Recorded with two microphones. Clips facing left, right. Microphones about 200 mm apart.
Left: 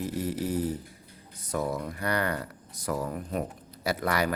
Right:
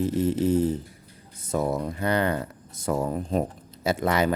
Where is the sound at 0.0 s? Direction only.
25° right (ahead or behind).